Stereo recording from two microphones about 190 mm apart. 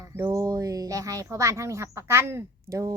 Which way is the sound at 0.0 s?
20° right (ahead or behind).